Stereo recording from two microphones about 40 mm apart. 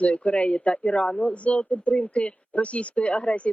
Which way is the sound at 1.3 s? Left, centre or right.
Left.